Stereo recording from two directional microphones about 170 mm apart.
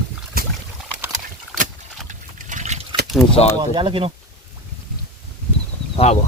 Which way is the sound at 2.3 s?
45° right (ahead or behind).